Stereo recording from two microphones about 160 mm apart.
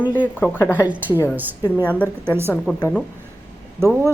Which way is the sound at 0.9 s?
10° right (ahead or behind).